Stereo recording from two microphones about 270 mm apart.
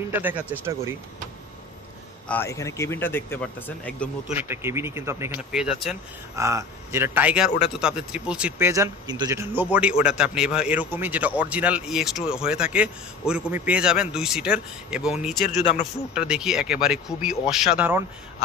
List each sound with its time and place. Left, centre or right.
0.1 s speech: centre
2.2 s speech: centre
4.4 s speech: centre
15.4 s a man's voice: left
16.2 s speech: centre